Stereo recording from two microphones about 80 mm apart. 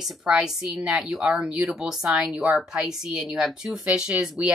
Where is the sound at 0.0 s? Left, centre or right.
Centre.